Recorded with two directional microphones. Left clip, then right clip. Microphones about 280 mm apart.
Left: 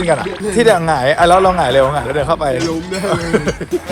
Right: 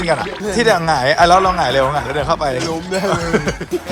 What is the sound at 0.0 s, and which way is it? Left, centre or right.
Speech, centre.